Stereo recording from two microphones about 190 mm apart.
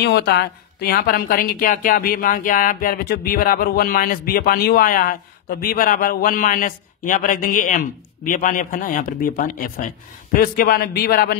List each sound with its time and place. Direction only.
0.0 s a woman's voice: 60° left (ahead or behind)